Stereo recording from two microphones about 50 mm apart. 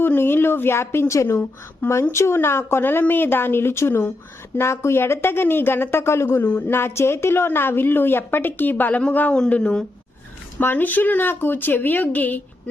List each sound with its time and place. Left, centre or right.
0.2 s a woman's voice: left
1.8 s speech: left
2.1 s a woman's voice: left
4.6 s a woman's voice: left
6.5 s speech: left
6.7 s a woman's voice: left
9.5 s speech: left
10.6 s speech: left